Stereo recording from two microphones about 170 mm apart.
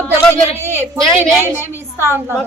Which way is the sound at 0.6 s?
15° right (ahead or behind).